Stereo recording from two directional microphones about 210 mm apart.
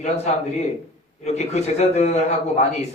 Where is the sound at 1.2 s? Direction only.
30° left (ahead or behind).